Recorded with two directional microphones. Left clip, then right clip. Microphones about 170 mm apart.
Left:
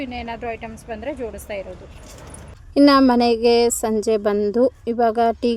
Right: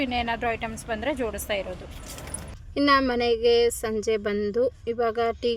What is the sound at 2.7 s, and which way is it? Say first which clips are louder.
A woman's voice: left 7 dB; 20° left (ahead or behind).